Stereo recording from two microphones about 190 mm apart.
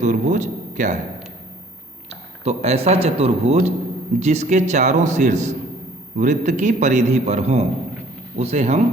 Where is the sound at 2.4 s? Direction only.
35° right (ahead or behind).